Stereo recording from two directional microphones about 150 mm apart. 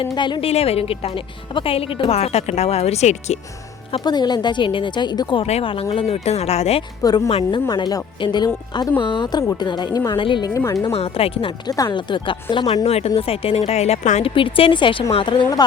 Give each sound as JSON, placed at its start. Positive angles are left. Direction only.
{"t": 0.0, "sound": "speech", "side_deg": 30}
{"t": 0.5, "sound": "speech", "side_deg": 40}
{"t": 3.9, "sound": "speech", "side_deg": 30}
{"t": 5.5, "sound": "speech", "side_deg": 40}
{"t": 7.0, "sound": "a woman's voice", "side_deg": 25}
{"t": 7.3, "sound": "speech", "side_deg": 40}
{"t": 7.7, "sound": "a woman's voice", "side_deg": 25}
{"t": 10.5, "sound": "a woman's voice", "side_deg": 20}
{"t": 10.9, "sound": "speech", "side_deg": 40}
{"t": 14.3, "sound": "speech", "side_deg": 35}